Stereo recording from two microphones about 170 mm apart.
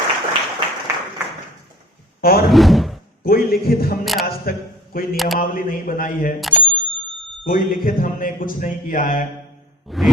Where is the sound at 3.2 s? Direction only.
65° left (ahead or behind).